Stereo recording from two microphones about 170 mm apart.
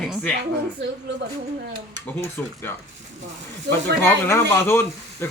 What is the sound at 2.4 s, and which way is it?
Speech, 10° left (ahead or behind).